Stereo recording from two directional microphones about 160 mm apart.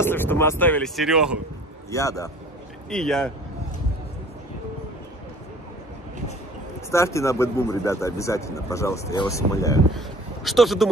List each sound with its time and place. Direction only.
0.0 s speech: 15° left (ahead or behind)
0.9 s speech: 5° right (ahead or behind)
1.9 s a man's voice: 20° left (ahead or behind)
2.9 s speech: 5° left (ahead or behind)
6.9 s a man's voice: 20° left (ahead or behind)
9.9 s speech: centre (ahead or behind)